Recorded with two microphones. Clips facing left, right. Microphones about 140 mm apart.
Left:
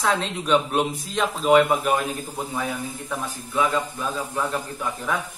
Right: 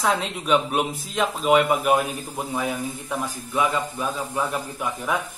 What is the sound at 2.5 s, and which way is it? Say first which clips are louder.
Speech: right 4 dB; 20° right (ahead or behind).